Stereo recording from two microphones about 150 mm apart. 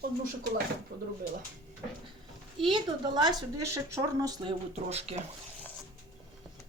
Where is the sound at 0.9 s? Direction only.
90° right.